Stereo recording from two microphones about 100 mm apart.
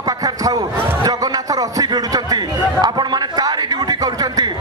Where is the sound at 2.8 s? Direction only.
45° right (ahead or behind).